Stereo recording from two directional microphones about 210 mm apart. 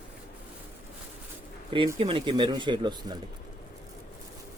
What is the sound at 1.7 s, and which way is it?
Speech, 25° right (ahead or behind).